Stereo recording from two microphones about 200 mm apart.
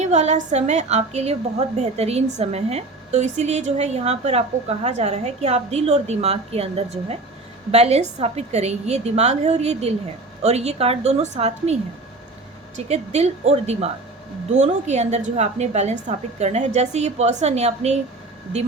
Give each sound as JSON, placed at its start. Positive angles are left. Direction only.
{"t": 0.0, "sound": "a woman's voice", "side_deg": -35}